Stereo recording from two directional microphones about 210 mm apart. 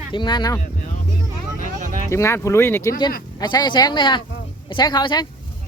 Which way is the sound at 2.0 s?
15° left (ahead or behind).